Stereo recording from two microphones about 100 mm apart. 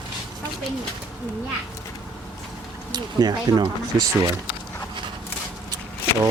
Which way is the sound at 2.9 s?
45° right (ahead or behind).